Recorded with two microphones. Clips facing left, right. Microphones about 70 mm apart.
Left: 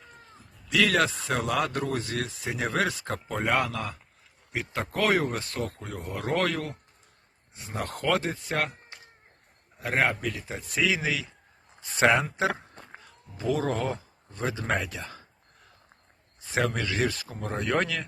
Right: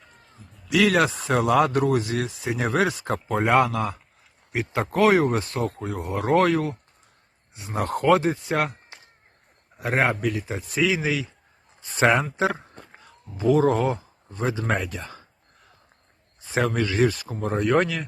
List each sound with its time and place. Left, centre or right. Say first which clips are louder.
0.7 s speech: right 4 dB; centre
7.7 s speech: right 8 dB; centre
9.7 s speech: right 3 dB; centre
16.5 s speech: right 4 dB; centre